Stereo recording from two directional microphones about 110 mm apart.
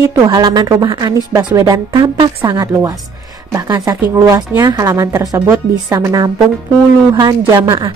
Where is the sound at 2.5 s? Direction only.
30° right (ahead or behind).